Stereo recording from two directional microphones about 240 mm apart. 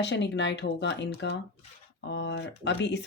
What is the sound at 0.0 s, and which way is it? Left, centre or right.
Speech, left.